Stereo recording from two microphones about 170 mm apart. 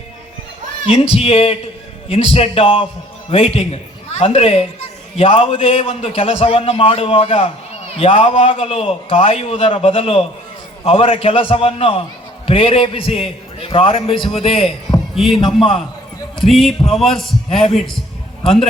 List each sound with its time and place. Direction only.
0.9 s a man's voice: 35° left (ahead or behind)
15.1 s a man's voice: centre (ahead or behind)
16.5 s a man's voice: centre (ahead or behind)